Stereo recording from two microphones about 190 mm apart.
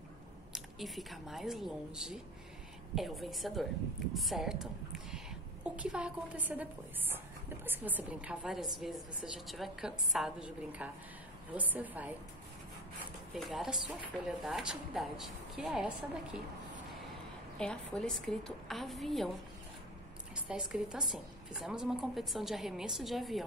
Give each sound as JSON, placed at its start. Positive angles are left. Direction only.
{"t": 0.5, "sound": "a woman's voice", "side_deg": 0}
{"t": 13.3, "sound": "a woman's voice", "side_deg": 0}
{"t": 17.6, "sound": "a woman's voice", "side_deg": 5}
{"t": 20.4, "sound": "a woman's voice", "side_deg": -5}